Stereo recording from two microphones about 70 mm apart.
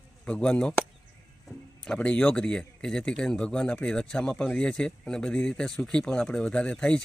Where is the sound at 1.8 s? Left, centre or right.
Centre.